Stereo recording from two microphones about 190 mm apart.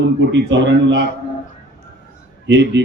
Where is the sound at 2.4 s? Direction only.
65° right (ahead or behind).